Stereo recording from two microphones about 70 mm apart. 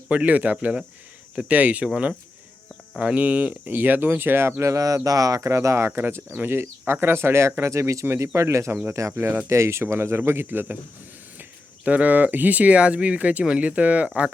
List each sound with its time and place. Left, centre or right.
0.1 s speech: right
3.0 s speech: centre; by 5.9 s right
5.9 s speech: right
8.0 s speech: right
11.9 s speech: right